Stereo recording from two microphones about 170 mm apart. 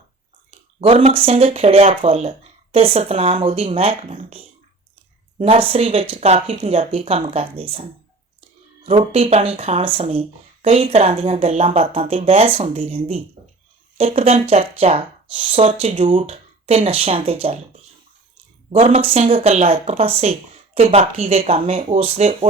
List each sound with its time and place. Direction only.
0.8 s speech: 40° right (ahead or behind)
8.9 s speech: 35° right (ahead or behind)
18.7 s speech: 35° right (ahead or behind)